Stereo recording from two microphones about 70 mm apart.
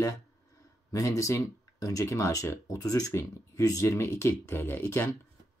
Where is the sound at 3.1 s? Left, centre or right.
Left.